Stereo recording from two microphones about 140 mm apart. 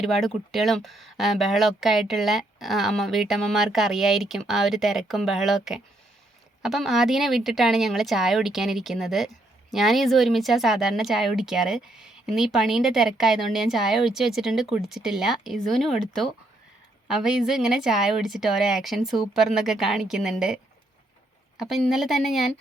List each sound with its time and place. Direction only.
0.0 s speech: centre (ahead or behind)
21.6 s speech: centre (ahead or behind)